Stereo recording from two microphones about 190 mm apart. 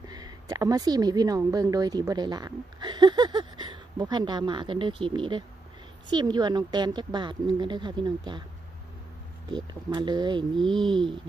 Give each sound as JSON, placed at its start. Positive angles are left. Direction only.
{"t": 0.1, "sound": "speech", "side_deg": -20}
{"t": 9.9, "sound": "speech", "side_deg": -25}